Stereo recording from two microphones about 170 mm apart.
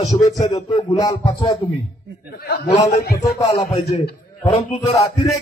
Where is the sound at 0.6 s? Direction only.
35° left (ahead or behind).